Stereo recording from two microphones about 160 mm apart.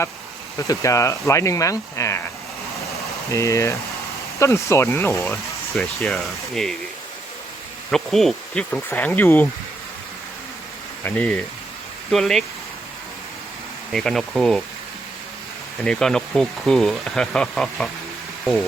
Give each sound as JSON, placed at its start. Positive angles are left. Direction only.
{"t": 0.6, "sound": "speech", "side_deg": 20}
{"t": 3.3, "sound": "speech", "side_deg": 20}
{"t": 5.3, "sound": "speech", "side_deg": 0}
{"t": 7.9, "sound": "speech", "side_deg": 0}
{"t": 11.0, "sound": "speech", "side_deg": 10}
{"t": 13.9, "sound": "speech", "side_deg": 5}
{"t": 15.8, "sound": "speech", "side_deg": 5}